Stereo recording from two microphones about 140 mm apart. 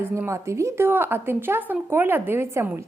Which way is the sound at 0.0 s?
20° right (ahead or behind).